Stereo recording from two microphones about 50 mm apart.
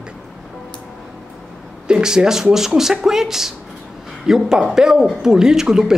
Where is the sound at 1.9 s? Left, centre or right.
Centre.